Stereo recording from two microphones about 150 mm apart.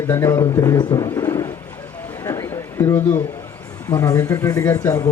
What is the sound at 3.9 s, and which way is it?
A man's voice, 25° left (ahead or behind).